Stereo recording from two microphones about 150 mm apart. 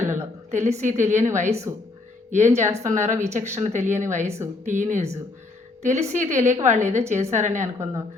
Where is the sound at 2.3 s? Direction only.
50° right (ahead or behind).